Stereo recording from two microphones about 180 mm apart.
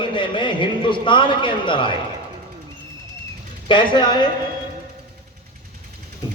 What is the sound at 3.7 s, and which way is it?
Speech, 25° left (ahead or behind).